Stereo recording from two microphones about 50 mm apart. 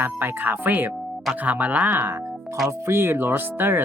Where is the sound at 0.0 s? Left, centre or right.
Right.